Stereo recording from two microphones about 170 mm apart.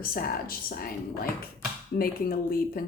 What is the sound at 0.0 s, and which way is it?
Speech, 60° left (ahead or behind).